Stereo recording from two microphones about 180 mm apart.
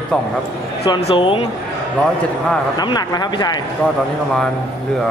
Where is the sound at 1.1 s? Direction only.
30° left (ahead or behind).